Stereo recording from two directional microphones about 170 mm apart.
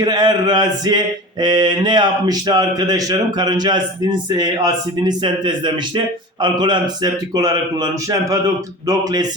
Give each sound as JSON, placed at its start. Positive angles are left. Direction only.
{"t": 0.0, "sound": "mantra", "side_deg": -25}